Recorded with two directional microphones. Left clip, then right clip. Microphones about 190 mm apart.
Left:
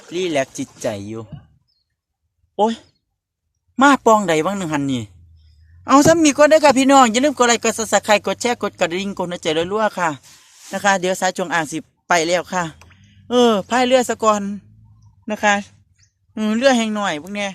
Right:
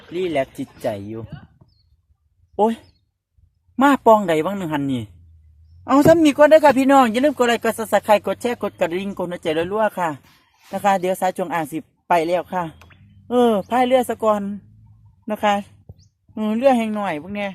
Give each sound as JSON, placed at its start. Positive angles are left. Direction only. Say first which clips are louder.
{"t": 0.1, "sound": "speech", "louder": "left 2 dB", "side_deg": 15}
{"t": 2.6, "sound": "speech", "louder": "left 1 dB", "side_deg": 0}
{"t": 3.8, "sound": "speech", "louder": "left 1 dB", "side_deg": 15}
{"t": 6.1, "sound": "speech", "louder": "even", "side_deg": 10}
{"t": 16.3, "sound": "speech", "louder": "left 1 dB", "side_deg": 15}